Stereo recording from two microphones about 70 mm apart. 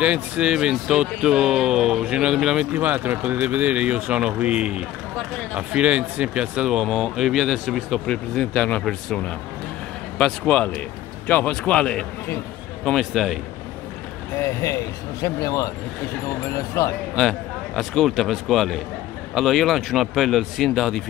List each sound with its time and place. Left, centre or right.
0.0 s speech: centre
2.7 s speech: right; by 8.0 s centre
8.1 s speech: centre
11.2 s speech: left
12.9 s speech: centre
14.4 s speech: left
17.1 s a man's voice: centre